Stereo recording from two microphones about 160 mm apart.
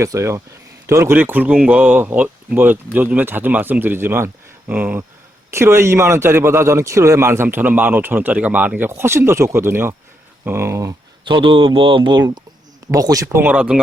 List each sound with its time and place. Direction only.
0.0 s a man's voice: 20° right (ahead or behind)
11.3 s a man's voice: 30° right (ahead or behind); by 13.7 s 10° right (ahead or behind)